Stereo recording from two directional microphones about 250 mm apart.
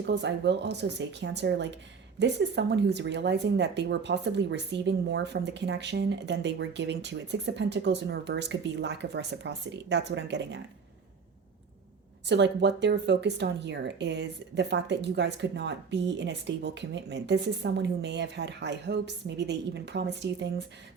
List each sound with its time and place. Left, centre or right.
0.0 s speech: right
12.2 s speech: right